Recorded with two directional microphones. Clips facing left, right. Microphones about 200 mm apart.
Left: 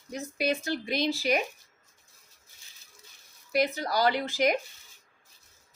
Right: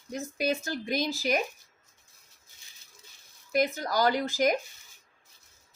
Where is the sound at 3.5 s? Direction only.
45° right (ahead or behind).